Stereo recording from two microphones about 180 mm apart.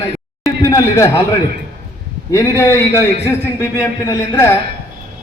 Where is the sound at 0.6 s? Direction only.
15° left (ahead or behind).